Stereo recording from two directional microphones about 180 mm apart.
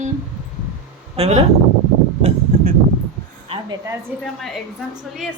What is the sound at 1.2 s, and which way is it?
Speech, 35° right (ahead or behind).